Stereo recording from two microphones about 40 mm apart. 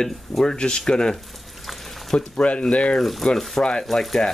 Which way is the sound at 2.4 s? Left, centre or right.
Left.